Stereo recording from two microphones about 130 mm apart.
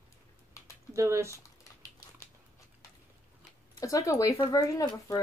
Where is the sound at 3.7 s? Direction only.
25° left (ahead or behind).